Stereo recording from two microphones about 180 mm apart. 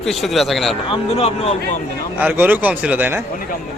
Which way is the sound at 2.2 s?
10° right (ahead or behind).